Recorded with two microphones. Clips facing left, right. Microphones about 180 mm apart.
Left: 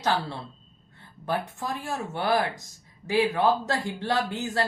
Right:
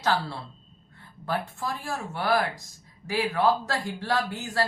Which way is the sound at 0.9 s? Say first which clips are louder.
Left 1 dB; 20° left (ahead or behind).